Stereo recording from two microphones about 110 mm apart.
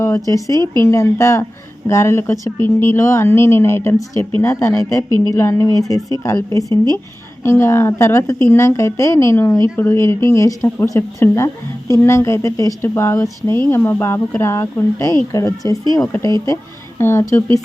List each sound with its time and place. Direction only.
0.0 s speech: 30° left (ahead or behind)